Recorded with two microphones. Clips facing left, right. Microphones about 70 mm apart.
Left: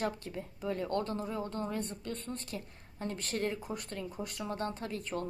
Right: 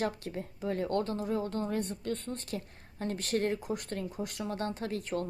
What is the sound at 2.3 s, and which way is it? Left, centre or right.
A woman's voice, right.